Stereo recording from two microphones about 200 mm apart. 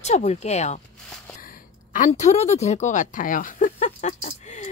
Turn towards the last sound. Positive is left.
turn(degrees=35)  # may be behind; listen again after turning